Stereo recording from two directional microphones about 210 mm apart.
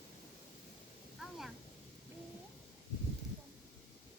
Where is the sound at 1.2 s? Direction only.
Centre (ahead or behind).